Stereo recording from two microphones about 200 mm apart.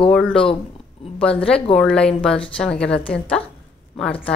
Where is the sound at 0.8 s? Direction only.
30° left (ahead or behind).